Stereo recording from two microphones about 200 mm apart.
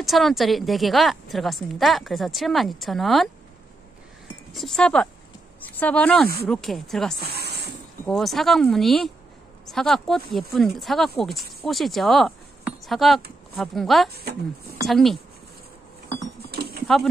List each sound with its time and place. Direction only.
0.0 s speech: centre (ahead or behind)
4.5 s speech: centre (ahead or behind)
7.2 s a sound: 55° right (ahead or behind)
8.1 s speech: centre (ahead or behind)
16.4 s a sound: 55° right (ahead or behind)
16.8 s speech: centre (ahead or behind)